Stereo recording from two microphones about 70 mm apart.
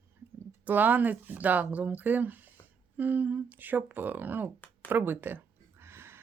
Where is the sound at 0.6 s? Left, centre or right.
Right.